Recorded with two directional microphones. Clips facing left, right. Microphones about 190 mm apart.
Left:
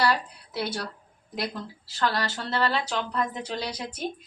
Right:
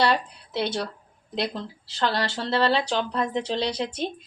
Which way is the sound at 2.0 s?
25° right (ahead or behind).